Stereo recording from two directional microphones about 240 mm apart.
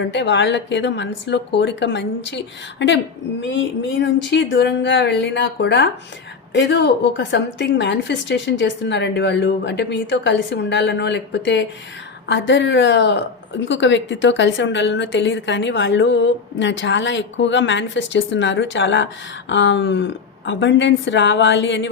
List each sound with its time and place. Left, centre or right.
0.1 s a woman's voice: left